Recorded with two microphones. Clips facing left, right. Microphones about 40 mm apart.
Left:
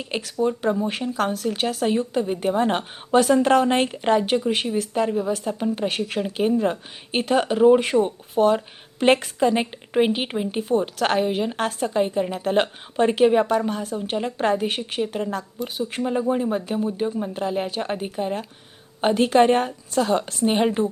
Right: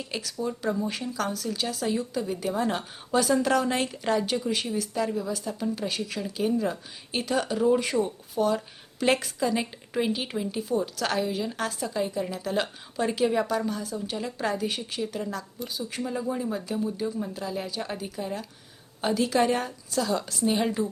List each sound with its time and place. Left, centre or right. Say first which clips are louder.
0.0 s speech: left 8 dB; left